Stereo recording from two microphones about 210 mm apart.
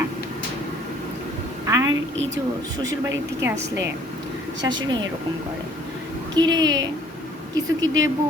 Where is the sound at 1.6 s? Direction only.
15° right (ahead or behind).